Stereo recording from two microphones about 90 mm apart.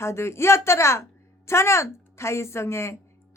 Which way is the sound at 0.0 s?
30° left (ahead or behind).